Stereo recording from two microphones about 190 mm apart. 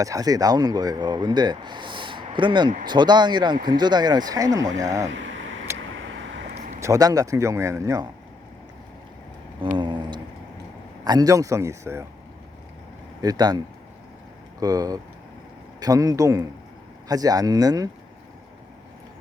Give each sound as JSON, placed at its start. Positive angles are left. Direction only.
{"t": 0.0, "sound": "speech", "side_deg": -20}
{"t": 5.1, "sound": "a sound", "side_deg": -75}
{"t": 5.7, "sound": "vehicle", "side_deg": -90}
{"t": 6.7, "sound": "speech", "side_deg": -15}
{"t": 9.7, "sound": "a sound", "side_deg": -25}
{"t": 11.0, "sound": "speech", "side_deg": -20}
{"t": 13.2, "sound": "speech", "side_deg": -20}
{"t": 14.6, "sound": "speech", "side_deg": -20}